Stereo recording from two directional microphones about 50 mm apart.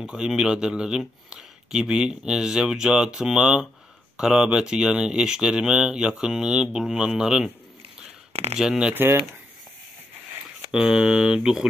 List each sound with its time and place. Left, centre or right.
0.0 s speech: centre
8.5 s speech: centre
8.9 s speech: right
10.7 s speech: centre